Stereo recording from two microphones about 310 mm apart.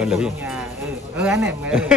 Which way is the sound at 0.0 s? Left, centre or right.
Centre.